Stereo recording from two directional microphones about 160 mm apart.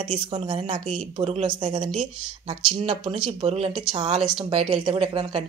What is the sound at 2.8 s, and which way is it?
Speech, 40° right (ahead or behind).